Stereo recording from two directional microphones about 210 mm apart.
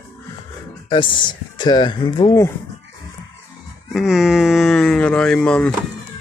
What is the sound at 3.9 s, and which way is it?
Speech, centre (ahead or behind).